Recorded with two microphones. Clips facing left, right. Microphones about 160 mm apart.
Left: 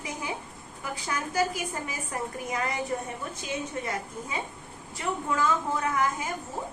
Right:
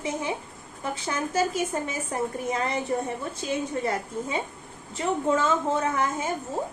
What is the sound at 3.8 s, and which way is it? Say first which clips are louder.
A woman's voice: right 6 dB; 30° right (ahead or behind).